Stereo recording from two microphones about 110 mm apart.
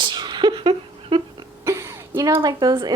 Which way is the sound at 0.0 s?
40° right (ahead or behind).